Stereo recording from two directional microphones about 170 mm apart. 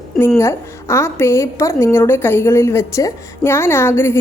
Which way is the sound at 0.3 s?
15° left (ahead or behind).